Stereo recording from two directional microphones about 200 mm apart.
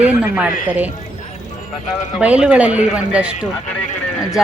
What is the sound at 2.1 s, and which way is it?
A woman's voice, 5° right (ahead or behind).